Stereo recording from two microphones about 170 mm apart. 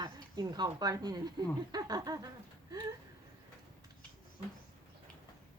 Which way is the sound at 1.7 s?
25° right (ahead or behind).